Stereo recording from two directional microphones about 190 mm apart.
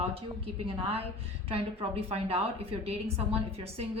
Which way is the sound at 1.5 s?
30° right (ahead or behind).